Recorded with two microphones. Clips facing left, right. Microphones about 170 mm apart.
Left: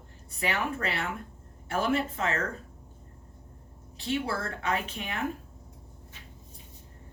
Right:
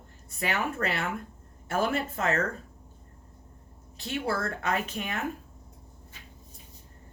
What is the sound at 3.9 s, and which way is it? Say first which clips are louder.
Speech: even; 40° right (ahead or behind).